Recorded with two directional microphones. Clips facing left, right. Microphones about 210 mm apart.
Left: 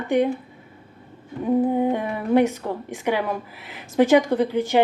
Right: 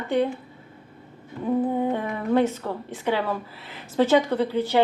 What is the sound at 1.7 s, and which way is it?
A woman's voice, 15° left (ahead or behind).